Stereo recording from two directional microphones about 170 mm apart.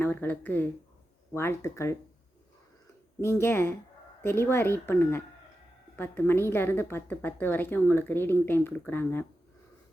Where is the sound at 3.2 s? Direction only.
15° left (ahead or behind).